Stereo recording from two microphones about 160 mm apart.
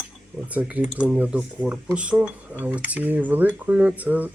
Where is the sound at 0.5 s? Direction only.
10° right (ahead or behind).